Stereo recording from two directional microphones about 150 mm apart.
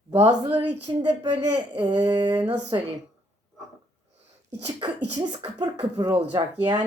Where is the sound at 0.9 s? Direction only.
30° right (ahead or behind).